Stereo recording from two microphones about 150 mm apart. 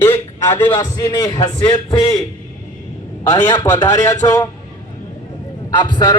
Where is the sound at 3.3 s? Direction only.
30° left (ahead or behind).